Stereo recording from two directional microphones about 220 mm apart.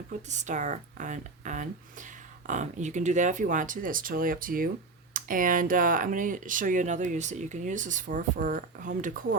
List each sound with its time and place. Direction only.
0.3 s speech: 35° right (ahead or behind)